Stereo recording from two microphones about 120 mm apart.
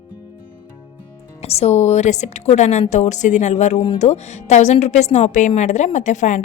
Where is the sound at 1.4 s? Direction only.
60° left (ahead or behind).